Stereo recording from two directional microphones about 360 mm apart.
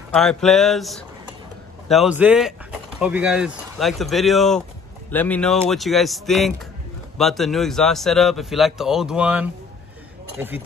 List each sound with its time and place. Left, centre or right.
0.1 s a man's voice: centre